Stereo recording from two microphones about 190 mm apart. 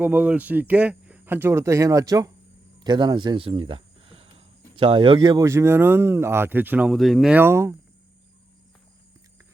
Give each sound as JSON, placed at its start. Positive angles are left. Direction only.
{"t": 0.0, "sound": "speech", "side_deg": -10}